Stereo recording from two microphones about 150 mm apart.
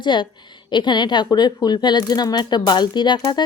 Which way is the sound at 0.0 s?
30° left (ahead or behind).